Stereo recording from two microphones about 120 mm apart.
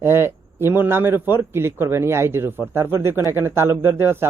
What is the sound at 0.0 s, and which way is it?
A man's voice, 20° right (ahead or behind).